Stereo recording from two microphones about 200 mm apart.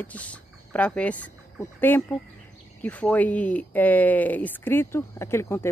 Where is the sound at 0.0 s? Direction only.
5° left (ahead or behind).